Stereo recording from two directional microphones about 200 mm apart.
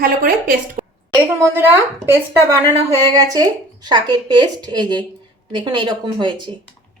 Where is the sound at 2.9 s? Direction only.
15° right (ahead or behind).